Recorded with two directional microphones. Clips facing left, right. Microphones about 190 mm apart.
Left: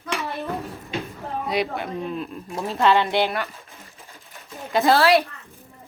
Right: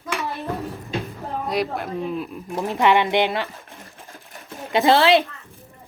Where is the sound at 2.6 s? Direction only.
15° right (ahead or behind).